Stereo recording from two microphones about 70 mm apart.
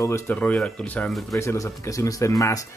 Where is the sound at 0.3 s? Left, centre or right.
Left.